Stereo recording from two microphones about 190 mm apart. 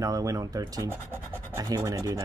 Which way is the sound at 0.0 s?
15° right (ahead or behind).